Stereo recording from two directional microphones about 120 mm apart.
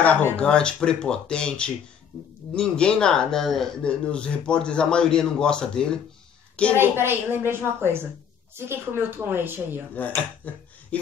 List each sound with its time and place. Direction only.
0.0 s speech: 10° left (ahead or behind)
6.7 s a woman's voice: 20° right (ahead or behind)
9.9 s speech: 10° left (ahead or behind)